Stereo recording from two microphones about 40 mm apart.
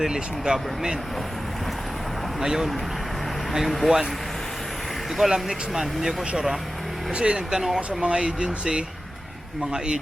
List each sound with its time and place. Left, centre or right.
0.0 s speech: centre
2.4 s speech: centre
3.7 s speech: centre
5.3 s speech: centre
7.1 s speech: right
7.3 s speech: centre
7.8 s speech: right